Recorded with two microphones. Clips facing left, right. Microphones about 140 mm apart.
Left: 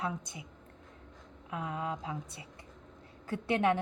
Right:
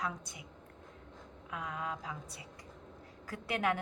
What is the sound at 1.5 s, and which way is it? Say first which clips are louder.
A woman's voice: left 4 dB; 25° left (ahead or behind).